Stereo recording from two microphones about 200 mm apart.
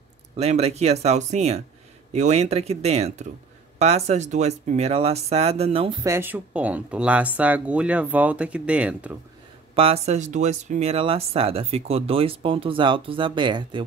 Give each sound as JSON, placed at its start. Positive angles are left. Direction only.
{"t": 0.4, "sound": "speech", "side_deg": -30}
{"t": 6.0, "sound": "speech", "side_deg": -10}
{"t": 9.8, "sound": "speech", "side_deg": -30}